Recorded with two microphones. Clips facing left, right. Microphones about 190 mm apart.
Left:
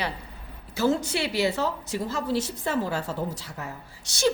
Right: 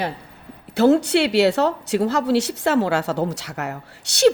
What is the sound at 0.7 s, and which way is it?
Speech, 65° right (ahead or behind).